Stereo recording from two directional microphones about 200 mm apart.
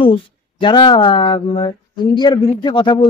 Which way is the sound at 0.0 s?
25° left (ahead or behind).